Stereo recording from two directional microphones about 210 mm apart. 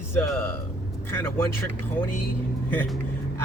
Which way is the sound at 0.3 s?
10° left (ahead or behind).